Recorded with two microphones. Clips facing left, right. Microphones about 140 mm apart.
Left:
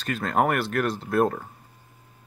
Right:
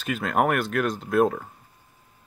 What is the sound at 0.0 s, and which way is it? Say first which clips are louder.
Speech: even; 5° right (ahead or behind).